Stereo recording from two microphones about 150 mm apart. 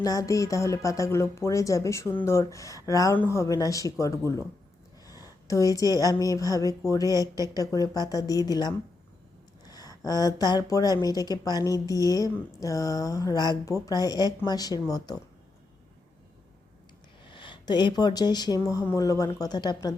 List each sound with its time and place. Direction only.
0.0 s a woman's voice: 25° left (ahead or behind)
7.1 s a woman's voice: 20° right (ahead or behind)
7.5 s a woman's voice: 25° left (ahead or behind)
17.2 s a woman's voice: 35° left (ahead or behind)